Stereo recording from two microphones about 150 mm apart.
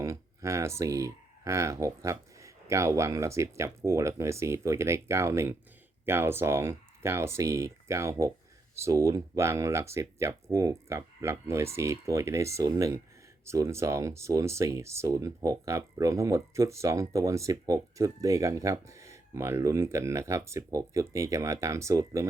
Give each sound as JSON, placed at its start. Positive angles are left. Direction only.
{"t": 0.0, "sound": "speech", "side_deg": -20}